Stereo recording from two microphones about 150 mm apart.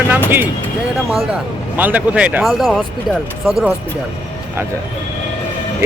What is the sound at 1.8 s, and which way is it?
A man's voice, 10° right (ahead or behind).